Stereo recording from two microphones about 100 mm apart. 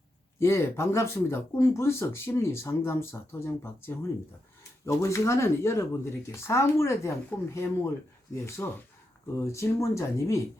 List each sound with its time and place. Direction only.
0.3 s speech: 25° left (ahead or behind)